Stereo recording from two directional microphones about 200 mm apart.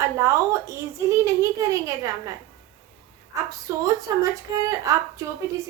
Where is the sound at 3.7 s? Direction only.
15° right (ahead or behind).